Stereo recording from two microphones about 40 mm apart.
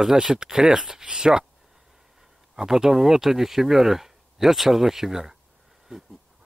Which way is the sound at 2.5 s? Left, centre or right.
Centre.